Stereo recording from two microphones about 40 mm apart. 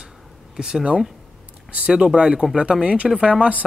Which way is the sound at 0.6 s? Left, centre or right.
Centre.